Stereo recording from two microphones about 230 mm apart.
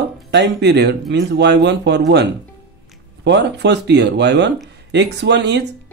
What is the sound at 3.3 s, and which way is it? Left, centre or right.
Speech, right.